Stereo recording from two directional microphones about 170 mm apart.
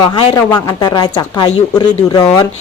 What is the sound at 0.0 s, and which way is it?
A woman's voice, 30° left (ahead or behind).